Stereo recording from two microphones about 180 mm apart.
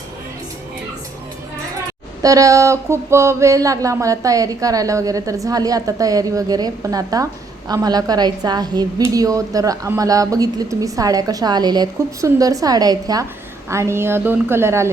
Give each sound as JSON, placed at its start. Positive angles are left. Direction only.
{"t": 2.2, "sound": "a woman's voice", "side_deg": -20}